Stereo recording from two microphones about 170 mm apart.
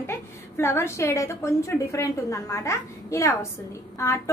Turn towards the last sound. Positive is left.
turn(degrees=15)  # may be behind; listen again after turning